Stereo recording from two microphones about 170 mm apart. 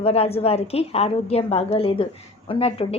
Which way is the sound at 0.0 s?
35° left (ahead or behind).